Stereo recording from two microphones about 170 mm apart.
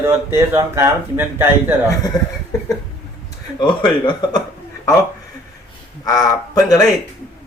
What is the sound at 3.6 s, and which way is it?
Speech, 25° left (ahead or behind).